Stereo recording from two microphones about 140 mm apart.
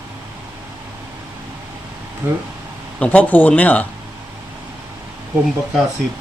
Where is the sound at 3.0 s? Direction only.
10° left (ahead or behind).